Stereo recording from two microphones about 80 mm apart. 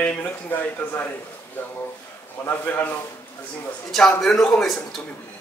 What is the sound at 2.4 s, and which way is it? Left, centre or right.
Speech, left.